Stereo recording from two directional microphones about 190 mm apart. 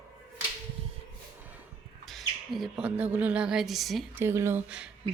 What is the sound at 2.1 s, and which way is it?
Speech, centre (ahead or behind).